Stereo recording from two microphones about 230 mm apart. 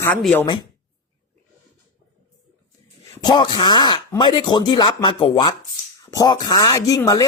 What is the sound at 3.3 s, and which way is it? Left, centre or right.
Speech, centre.